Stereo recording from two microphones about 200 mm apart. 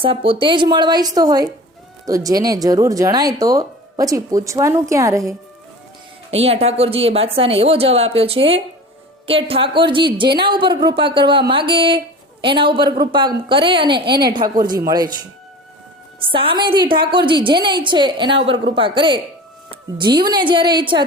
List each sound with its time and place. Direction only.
0.0 s a woman's voice: 25° right (ahead or behind)
6.3 s a woman's voice: 30° right (ahead or behind)
16.3 s a woman's voice: 25° right (ahead or behind)